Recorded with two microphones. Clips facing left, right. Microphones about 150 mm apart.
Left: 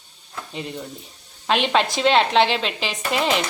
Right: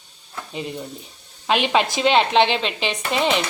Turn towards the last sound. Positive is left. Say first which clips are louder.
# right 1 dB
turn(degrees=0)  # may be behind; listen again after turning